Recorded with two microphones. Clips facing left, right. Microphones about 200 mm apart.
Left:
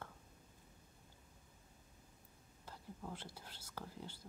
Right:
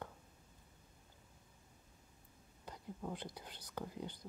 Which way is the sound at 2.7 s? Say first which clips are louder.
Right 4 dB; 15° right (ahead or behind).